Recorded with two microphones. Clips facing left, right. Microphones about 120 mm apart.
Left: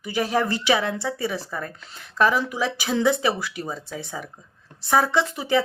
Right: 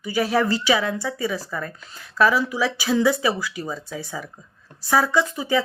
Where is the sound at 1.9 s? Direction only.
45° left (ahead or behind).